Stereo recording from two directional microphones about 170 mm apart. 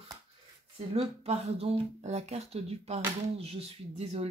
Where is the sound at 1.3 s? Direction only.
40° right (ahead or behind).